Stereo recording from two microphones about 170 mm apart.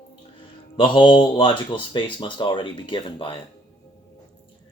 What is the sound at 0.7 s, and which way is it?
Speech, 30° left (ahead or behind).